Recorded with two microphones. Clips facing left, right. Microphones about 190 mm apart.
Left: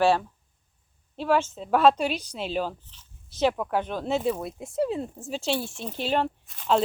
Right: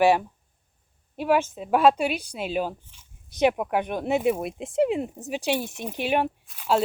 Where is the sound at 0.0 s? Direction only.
15° right (ahead or behind).